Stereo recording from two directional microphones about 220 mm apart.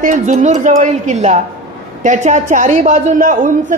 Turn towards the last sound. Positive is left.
turn(degrees=-35)  # may be behind; listen again after turning